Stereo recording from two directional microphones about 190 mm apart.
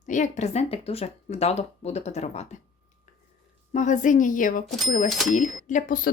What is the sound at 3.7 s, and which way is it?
A woman's voice, 40° left (ahead or behind).